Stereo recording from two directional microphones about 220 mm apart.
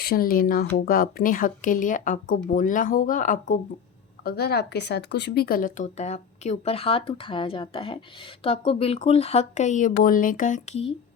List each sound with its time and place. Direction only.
0.0 s speech: 45° left (ahead or behind)